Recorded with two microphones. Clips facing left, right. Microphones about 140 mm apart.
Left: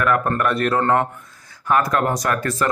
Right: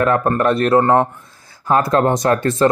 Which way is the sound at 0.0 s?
25° right (ahead or behind).